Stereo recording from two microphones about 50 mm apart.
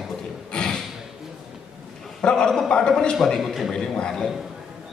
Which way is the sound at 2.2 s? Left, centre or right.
Centre.